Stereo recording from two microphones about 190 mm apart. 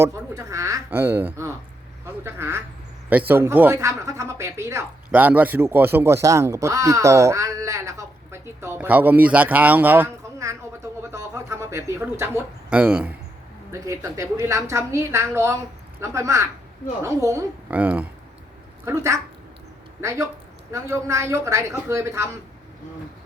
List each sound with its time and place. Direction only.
0.0 s speech: 15° right (ahead or behind)
13.7 s speech: 15° right (ahead or behind)